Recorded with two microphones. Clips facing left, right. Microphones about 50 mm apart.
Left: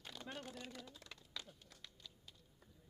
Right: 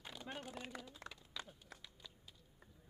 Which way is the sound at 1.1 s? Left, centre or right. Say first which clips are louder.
Right 2 dB; centre.